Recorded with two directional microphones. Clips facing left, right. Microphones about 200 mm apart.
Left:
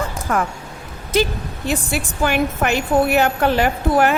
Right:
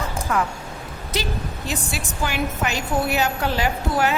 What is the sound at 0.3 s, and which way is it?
A woman's voice, 45° left (ahead or behind).